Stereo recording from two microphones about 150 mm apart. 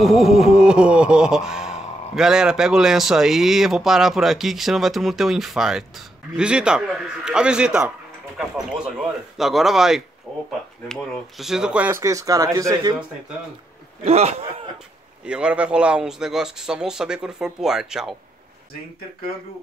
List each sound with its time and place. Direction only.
0.0 s speech: centre (ahead or behind)
10.3 s a sound: centre (ahead or behind)
10.9 s speech: centre (ahead or behind)
11.9 s speech: 20° right (ahead or behind)
14.0 s speech: 45° right (ahead or behind)
15.2 s speech: 5° right (ahead or behind)